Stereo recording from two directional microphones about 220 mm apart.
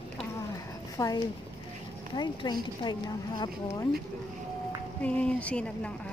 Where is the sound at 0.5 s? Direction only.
15° left (ahead or behind).